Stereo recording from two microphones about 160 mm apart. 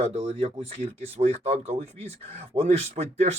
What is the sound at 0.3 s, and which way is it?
A man's voice, 35° right (ahead or behind).